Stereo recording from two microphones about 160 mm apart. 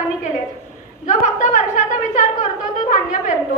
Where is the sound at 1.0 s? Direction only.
50° left (ahead or behind).